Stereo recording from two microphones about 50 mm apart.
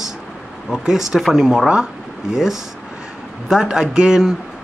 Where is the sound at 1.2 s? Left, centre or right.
Centre.